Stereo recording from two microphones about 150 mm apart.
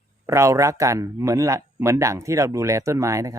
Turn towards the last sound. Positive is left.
turn(degrees=-20)  # may be behind; listen again after turning